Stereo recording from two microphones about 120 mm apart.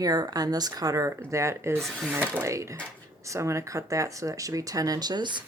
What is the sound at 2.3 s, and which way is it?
Speech, 20° right (ahead or behind).